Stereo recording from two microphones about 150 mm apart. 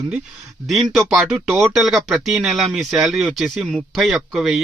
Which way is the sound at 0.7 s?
Centre (ahead or behind).